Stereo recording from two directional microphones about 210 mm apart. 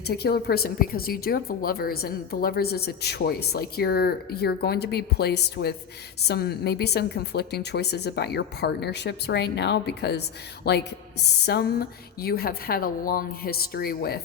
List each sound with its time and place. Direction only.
0.0 s speech: 50° left (ahead or behind)